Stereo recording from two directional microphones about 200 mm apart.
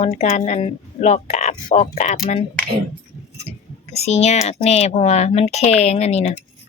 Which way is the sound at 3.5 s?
30° left (ahead or behind).